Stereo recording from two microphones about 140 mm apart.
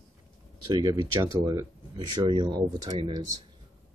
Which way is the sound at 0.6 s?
30° right (ahead or behind).